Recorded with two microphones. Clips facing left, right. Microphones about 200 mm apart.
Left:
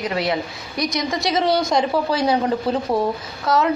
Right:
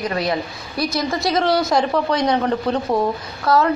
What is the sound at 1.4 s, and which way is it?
A woman's voice, centre (ahead or behind).